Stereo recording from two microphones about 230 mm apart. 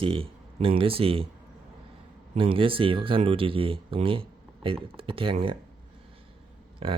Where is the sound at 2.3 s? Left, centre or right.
Right.